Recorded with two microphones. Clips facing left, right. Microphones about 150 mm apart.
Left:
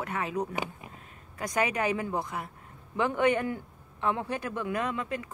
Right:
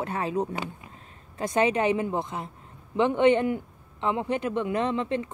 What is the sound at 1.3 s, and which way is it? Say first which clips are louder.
A woman's voice: right 5 dB; 25° right (ahead or behind).